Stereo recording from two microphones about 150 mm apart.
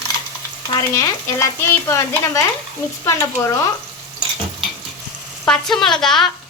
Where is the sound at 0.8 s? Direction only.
20° left (ahead or behind).